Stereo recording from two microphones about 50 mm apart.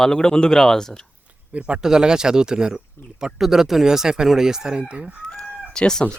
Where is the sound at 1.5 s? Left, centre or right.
Right.